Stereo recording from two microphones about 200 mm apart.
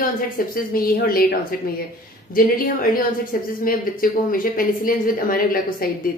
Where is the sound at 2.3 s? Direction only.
45° left (ahead or behind).